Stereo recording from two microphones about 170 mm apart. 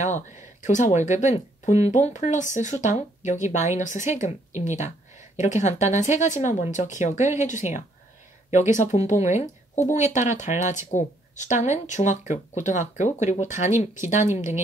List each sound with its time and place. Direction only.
0.7 s speech: 45° left (ahead or behind)